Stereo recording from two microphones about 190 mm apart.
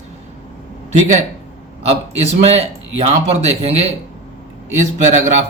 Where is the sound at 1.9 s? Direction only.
35° right (ahead or behind).